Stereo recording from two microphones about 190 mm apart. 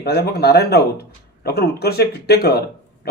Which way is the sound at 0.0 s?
55° left (ahead or behind).